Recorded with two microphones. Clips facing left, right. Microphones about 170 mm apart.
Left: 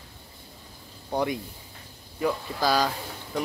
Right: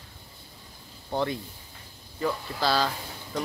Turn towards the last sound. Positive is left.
turn(degrees=10)  # may be behind; listen again after turning